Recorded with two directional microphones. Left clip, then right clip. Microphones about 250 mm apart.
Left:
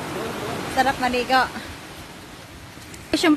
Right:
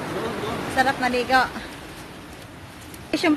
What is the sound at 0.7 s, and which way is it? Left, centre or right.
Speech, centre.